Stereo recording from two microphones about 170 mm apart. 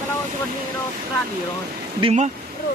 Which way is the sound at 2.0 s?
45° right (ahead or behind).